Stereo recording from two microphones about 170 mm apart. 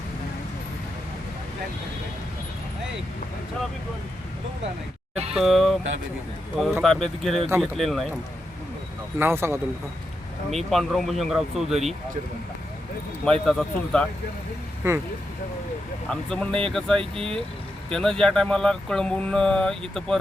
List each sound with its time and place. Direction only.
5.3 s speech: centre (ahead or behind)
9.1 s speech: 15° right (ahead or behind)
10.7 s speech: centre (ahead or behind)
13.2 s speech: 5° left (ahead or behind)
14.8 s speech: 15° right (ahead or behind)
16.0 s speech: 5° left (ahead or behind)